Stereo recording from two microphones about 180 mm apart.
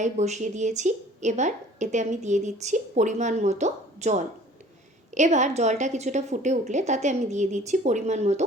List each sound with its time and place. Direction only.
0.0 s a woman's voice: 40° right (ahead or behind)